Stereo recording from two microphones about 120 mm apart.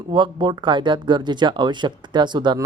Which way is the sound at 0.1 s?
40° right (ahead or behind).